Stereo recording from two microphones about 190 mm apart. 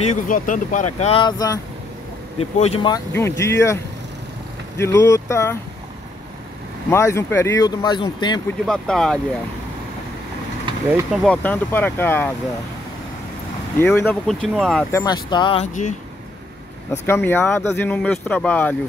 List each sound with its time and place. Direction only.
0.0 s speech: 40° left (ahead or behind)
1.2 s speech: 20° left (ahead or behind)
2.3 s speech: 30° left (ahead or behind)
2.9 s speech: 15° left (ahead or behind)
6.9 s speech: 15° left (ahead or behind)
8.6 s speech: centre (ahead or behind)
11.1 s speech: 5° left (ahead or behind)
13.7 s speech: 10° left (ahead or behind)
14.9 s speech: 20° left (ahead or behind)
15.6 s speech: 40° left (ahead or behind)
17.0 s speech: 10° left (ahead or behind)